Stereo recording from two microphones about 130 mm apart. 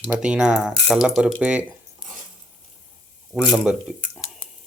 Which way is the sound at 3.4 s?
Centre (ahead or behind).